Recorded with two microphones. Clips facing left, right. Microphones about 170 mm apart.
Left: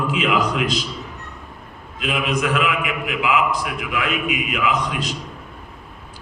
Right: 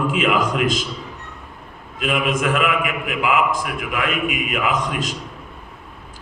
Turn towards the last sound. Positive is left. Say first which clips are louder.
# even
turn(degrees=-45)  # may be behind; listen again after turning